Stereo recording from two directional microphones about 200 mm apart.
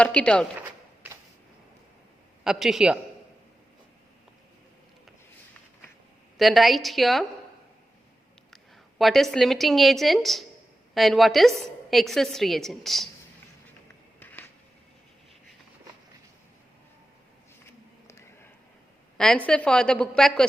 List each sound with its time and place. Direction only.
0.0 s a woman's voice: 5° left (ahead or behind)
2.4 s a woman's voice: centre (ahead or behind)
6.3 s a woman's voice: centre (ahead or behind)
9.0 s a woman's voice: centre (ahead or behind)
19.1 s a woman's voice: 5° left (ahead or behind)